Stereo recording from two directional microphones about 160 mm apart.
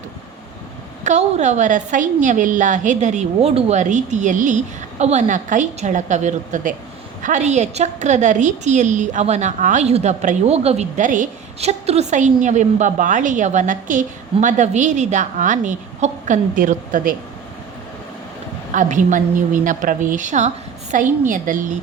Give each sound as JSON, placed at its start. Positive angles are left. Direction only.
{"t": 1.0, "sound": "a woman's voice", "side_deg": -45}
{"t": 18.7, "sound": "a woman's voice", "side_deg": -50}